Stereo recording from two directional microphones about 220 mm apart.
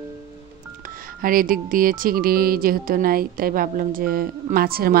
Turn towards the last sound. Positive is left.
turn(degrees=-45)  # may be behind; listen again after turning